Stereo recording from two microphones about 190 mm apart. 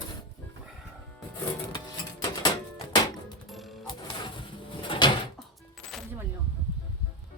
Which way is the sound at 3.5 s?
Centre (ahead or behind).